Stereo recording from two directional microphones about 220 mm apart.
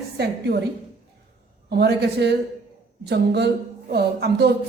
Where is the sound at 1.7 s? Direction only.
50° right (ahead or behind).